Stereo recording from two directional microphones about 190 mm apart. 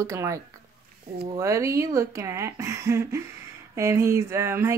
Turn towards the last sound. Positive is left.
turn(degrees=-15)  # may be behind; listen again after turning